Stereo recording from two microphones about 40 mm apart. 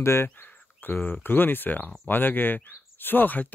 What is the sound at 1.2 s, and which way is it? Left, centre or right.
Speech, left.